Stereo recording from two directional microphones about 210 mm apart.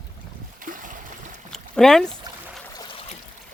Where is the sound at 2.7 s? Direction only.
25° left (ahead or behind).